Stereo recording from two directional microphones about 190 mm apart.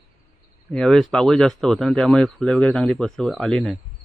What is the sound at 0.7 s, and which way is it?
Speech, 5° left (ahead or behind).